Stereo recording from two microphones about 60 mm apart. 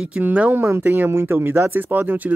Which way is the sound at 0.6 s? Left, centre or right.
Right.